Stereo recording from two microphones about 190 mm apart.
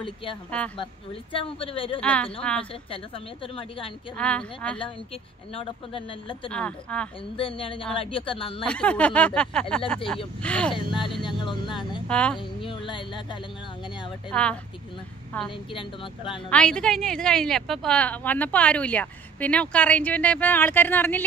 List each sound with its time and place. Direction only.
0.0 s speech: 25° left (ahead or behind)
2.0 s a woman's voice: 5° left (ahead or behind)
3.5 s speech: 30° left (ahead or behind)
4.2 s speech: 5° left (ahead or behind)
5.5 s speech: 30° left (ahead or behind)
6.5 s speech: 5° left (ahead or behind)
7.3 s speech: 30° left (ahead or behind)
8.6 s speech: 5° left (ahead or behind)
10.7 s speech: 25° left (ahead or behind)
12.1 s speech: 5° left (ahead or behind)
12.4 s speech: 25° left (ahead or behind)
14.3 s a woman's voice: 5° left (ahead or behind)
15.7 s speech: 25° left (ahead or behind)
16.4 s a woman's voice: 5° left (ahead or behind)